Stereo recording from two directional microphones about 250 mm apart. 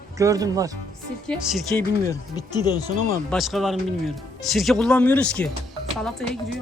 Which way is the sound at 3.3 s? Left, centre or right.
Centre.